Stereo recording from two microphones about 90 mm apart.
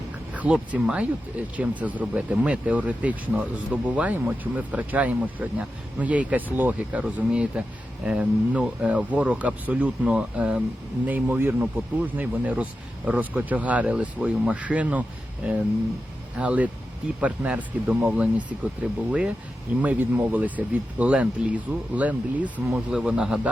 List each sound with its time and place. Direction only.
0.3 s speech: 15° right (ahead or behind)
16.4 s speech: 15° right (ahead or behind)